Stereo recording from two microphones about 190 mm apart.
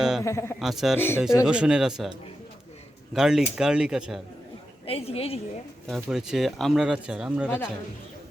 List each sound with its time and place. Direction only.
0.0 s a sound: 5° right (ahead or behind)
0.3 s a man's voice: 15° left (ahead or behind)
0.6 s speech: centre (ahead or behind)
0.9 s a man's voice: 10° left (ahead or behind)
1.5 s speech: 5° right (ahead or behind)
4.9 s a woman's voice: 30° left (ahead or behind)
5.9 s speech: centre (ahead or behind)